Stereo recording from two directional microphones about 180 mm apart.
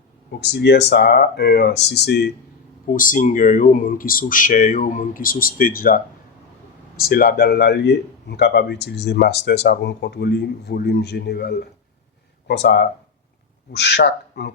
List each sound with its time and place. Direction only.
0.3 s speech: 65° left (ahead or behind)
2.9 s speech: 50° left (ahead or behind); by 14.5 s 70° left (ahead or behind)